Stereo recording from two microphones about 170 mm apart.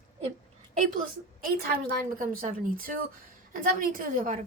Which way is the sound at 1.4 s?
60° right (ahead or behind).